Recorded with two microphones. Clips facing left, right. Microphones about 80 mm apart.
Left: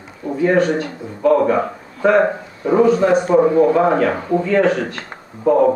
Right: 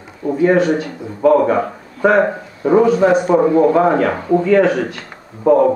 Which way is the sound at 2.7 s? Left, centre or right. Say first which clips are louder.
Right 1 dB; centre.